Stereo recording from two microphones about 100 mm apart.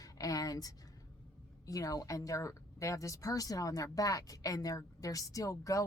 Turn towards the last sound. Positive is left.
turn(degrees=35)  # may be behind; listen again after turning